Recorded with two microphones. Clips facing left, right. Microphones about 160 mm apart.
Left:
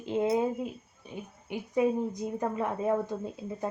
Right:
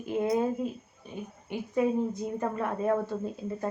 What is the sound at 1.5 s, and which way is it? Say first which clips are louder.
Speech: even; 15° left (ahead or behind).